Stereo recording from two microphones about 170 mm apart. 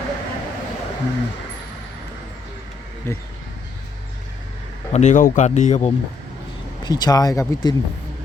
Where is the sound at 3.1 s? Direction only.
15° left (ahead or behind).